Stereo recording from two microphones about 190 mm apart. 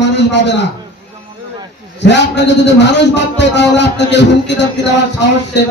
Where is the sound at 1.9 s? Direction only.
65° left (ahead or behind).